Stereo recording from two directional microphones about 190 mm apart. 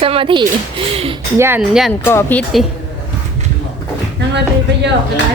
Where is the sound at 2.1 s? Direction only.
10° left (ahead or behind).